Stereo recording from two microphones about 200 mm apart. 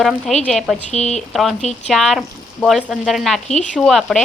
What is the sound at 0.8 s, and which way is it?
Speech, 35° left (ahead or behind).